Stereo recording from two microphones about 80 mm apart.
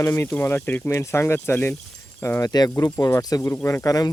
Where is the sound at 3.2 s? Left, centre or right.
Left.